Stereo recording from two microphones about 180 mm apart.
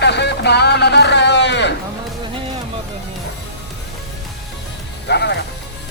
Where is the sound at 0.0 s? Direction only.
70° left (ahead or behind).